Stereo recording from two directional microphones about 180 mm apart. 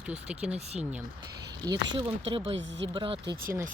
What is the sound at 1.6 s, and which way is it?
Speech, 25° right (ahead or behind).